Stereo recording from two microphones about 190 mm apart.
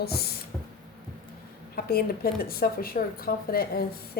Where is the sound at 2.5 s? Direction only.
50° left (ahead or behind).